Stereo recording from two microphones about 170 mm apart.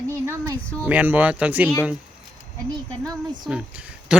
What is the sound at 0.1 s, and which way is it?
Speech, 15° right (ahead or behind).